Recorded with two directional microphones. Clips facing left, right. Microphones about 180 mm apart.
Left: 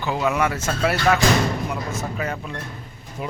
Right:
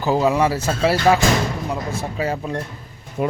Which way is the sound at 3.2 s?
50° right (ahead or behind).